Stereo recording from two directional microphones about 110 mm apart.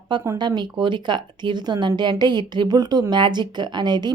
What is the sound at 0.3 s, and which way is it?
Speech, 40° right (ahead or behind).